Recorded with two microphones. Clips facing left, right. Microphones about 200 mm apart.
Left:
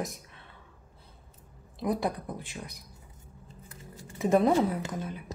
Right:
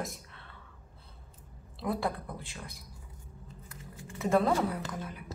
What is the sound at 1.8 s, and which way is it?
Speech, 20° left (ahead or behind).